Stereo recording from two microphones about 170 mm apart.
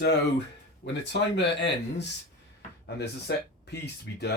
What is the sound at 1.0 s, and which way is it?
Speech, 90° left.